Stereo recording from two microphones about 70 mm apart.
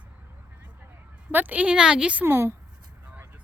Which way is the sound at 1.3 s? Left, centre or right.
Right.